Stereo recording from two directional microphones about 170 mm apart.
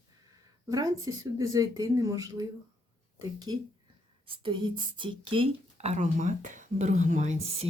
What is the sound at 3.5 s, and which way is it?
Speech, 25° right (ahead or behind).